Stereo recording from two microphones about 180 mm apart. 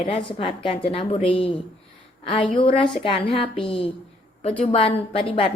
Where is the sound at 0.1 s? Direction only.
30° left (ahead or behind).